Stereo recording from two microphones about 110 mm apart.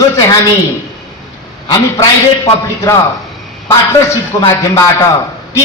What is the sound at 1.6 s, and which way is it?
A man's voice, 30° left (ahead or behind).